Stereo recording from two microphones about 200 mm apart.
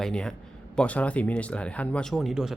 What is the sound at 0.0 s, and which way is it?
Speech, 5° left (ahead or behind).